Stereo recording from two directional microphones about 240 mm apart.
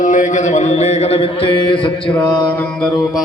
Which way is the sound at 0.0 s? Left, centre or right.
Left.